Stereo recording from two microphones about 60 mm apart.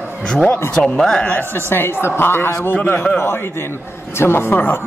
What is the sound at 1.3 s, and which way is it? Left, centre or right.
A man's voice, left.